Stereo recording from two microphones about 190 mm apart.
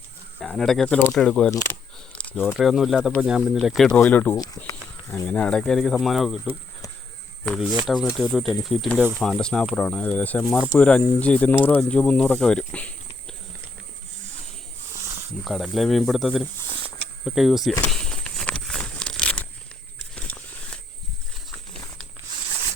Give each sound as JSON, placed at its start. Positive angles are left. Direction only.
{"t": 0.3, "sound": "speech", "side_deg": 5}
{"t": 4.7, "sound": "speech", "side_deg": 10}
{"t": 15.4, "sound": "speech", "side_deg": 0}
{"t": 16.6, "sound": "a sound", "side_deg": -25}
{"t": 17.2, "sound": "speech", "side_deg": 0}
{"t": 17.8, "sound": "a sound", "side_deg": 5}